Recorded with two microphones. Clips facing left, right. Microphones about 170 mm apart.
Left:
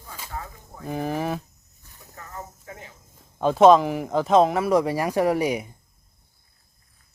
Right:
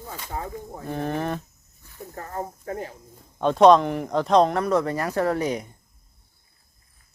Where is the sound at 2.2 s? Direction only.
45° right (ahead or behind).